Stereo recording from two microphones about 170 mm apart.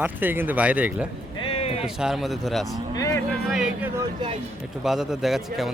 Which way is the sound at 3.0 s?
20° left (ahead or behind).